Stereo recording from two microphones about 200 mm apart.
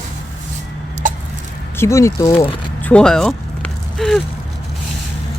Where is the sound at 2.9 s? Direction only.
5° left (ahead or behind).